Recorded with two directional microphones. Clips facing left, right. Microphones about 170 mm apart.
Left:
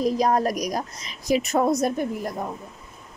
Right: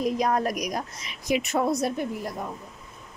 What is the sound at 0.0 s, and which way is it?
A woman's voice, 35° left (ahead or behind).